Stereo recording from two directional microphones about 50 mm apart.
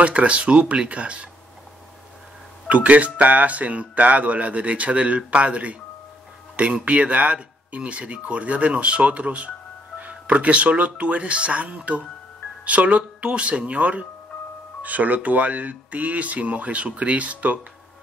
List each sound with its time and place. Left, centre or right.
0.0 s speech: right
2.7 s speech: right